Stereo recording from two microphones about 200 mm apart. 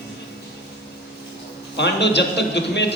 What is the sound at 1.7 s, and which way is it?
A man's voice, 60° left (ahead or behind).